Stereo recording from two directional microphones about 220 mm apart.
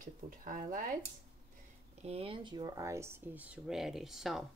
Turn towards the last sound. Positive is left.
turn(degrees=0)  # may be behind; listen again after turning